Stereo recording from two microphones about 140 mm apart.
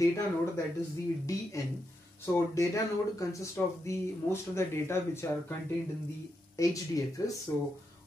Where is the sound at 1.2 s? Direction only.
25° left (ahead or behind).